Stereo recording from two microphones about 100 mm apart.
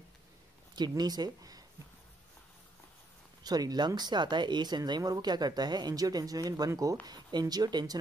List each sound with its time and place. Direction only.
0.7 s speech: 45° right (ahead or behind)
3.4 s speech: 40° right (ahead or behind)
7.1 s speech: 45° right (ahead or behind)